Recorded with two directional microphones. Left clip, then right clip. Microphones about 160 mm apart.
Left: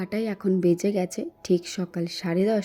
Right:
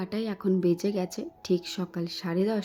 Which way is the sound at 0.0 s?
15° left (ahead or behind).